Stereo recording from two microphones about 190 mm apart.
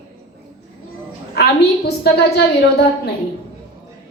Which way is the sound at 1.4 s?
60° left (ahead or behind).